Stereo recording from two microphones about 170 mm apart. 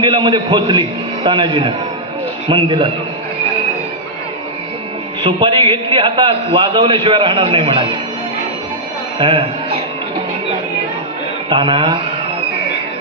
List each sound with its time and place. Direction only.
0.0 s a man's voice: 30° right (ahead or behind)
5.2 s a man's voice: 30° right (ahead or behind)
9.1 s a man's voice: 30° right (ahead or behind)
11.4 s a man's voice: 30° right (ahead or behind)